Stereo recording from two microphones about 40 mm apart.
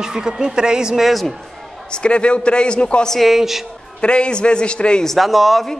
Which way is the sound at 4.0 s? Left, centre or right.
Left.